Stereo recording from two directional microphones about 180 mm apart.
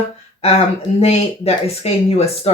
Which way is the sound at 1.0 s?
35° left (ahead or behind).